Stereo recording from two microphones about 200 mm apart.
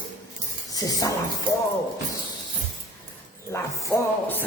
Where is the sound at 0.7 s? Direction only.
20° left (ahead or behind).